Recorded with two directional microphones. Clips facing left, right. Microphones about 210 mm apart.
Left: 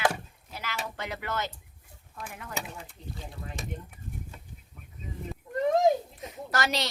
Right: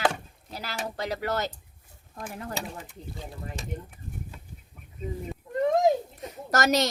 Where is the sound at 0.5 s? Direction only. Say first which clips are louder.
Right 3 dB; 35° right (ahead or behind).